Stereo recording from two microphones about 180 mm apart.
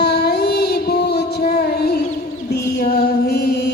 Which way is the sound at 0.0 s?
65° left (ahead or behind).